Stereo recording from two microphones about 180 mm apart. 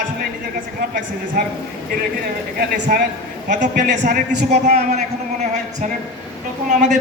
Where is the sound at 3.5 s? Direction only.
75° right (ahead or behind).